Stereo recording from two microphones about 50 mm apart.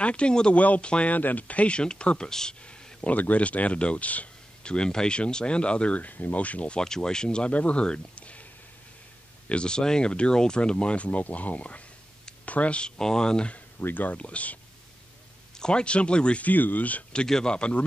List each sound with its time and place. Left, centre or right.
0.0 s speech: left
4.7 s speech: centre
6.8 s speech: centre
9.5 s speech: centre
13.7 s speech: left
14.1 s speech: left
15.5 s speech: centre
16.4 s speech: left
17.2 s speech: centre